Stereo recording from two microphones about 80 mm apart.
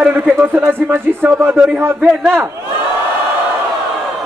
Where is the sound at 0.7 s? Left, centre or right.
Right.